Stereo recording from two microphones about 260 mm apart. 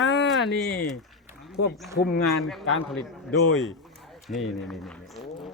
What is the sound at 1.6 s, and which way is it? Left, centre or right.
Speech, left.